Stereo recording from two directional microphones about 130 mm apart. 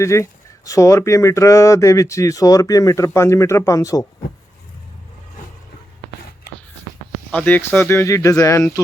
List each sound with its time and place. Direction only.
0.0 s speech: 20° left (ahead or behind)
7.3 s speech: 10° left (ahead or behind)